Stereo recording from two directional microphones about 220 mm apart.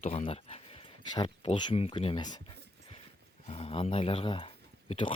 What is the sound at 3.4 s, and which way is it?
Speech, 25° left (ahead or behind).